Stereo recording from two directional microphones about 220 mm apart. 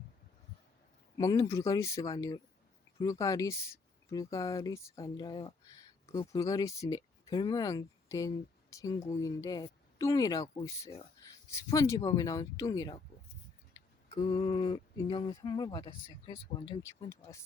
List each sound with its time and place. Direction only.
1.1 s speech: 15° left (ahead or behind)